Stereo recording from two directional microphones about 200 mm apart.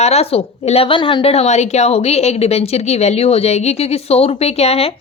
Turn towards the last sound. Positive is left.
turn(degrees=30)  # may be behind; listen again after turning